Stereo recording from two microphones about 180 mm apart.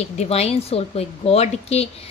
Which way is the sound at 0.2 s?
35° left (ahead or behind).